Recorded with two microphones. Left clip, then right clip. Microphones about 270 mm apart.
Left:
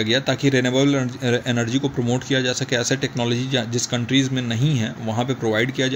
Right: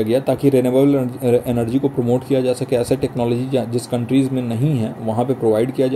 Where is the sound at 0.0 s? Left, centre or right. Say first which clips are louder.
Right 4 dB; left.